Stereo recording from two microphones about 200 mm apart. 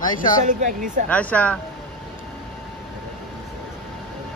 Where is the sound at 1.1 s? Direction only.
5° left (ahead or behind).